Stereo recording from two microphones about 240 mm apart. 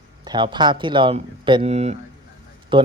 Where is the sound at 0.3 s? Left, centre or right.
Centre.